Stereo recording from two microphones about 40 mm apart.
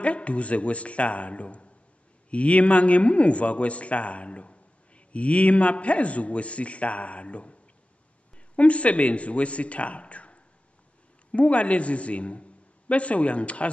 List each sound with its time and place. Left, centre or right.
0.0 s a man's voice: left
8.5 s a man's voice: left